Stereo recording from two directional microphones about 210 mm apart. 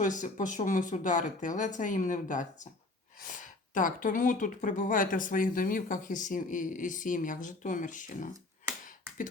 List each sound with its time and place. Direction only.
0.0 s speech: 35° left (ahead or behind)
8.3 s finger snapping: 10° right (ahead or behind)